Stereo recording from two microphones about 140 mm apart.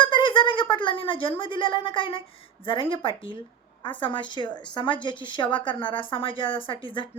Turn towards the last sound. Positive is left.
turn(degrees=35)  # may be behind; listen again after turning